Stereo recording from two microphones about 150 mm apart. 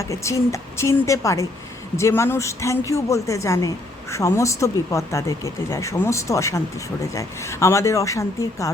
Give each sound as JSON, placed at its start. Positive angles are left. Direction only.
{"t": 0.0, "sound": "speech", "side_deg": 20}